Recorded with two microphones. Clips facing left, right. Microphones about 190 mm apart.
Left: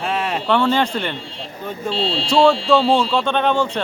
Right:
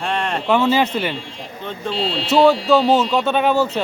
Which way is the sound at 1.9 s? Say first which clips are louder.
Even; 30° left (ahead or behind).